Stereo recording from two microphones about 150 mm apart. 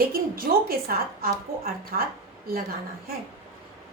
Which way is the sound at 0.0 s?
75° right (ahead or behind).